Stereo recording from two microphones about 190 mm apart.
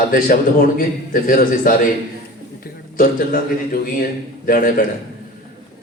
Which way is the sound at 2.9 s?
50° left (ahead or behind).